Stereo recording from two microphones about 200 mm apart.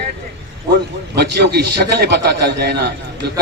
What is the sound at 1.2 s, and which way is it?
A man's voice, 55° right (ahead or behind).